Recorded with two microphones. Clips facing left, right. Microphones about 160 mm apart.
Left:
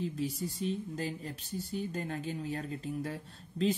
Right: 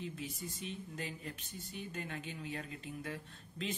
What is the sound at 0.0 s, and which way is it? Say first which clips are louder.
Speech: left 9 dB; 35° left (ahead or behind).